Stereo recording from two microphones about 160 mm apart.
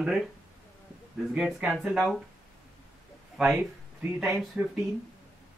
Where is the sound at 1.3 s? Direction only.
5° right (ahead or behind).